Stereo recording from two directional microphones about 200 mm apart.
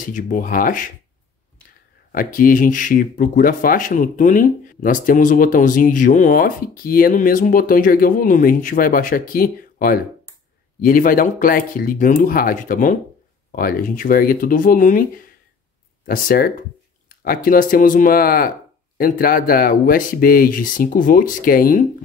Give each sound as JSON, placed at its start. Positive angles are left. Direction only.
{"t": 0.0, "sound": "speech", "side_deg": 45}
{"t": 2.1, "sound": "speech", "side_deg": 45}